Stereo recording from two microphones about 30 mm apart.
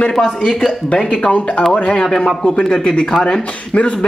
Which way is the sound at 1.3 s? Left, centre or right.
Left.